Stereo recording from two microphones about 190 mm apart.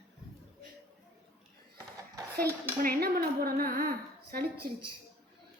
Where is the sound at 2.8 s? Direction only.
50° right (ahead or behind).